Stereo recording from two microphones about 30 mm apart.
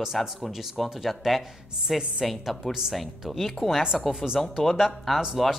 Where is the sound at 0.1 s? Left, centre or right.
Centre.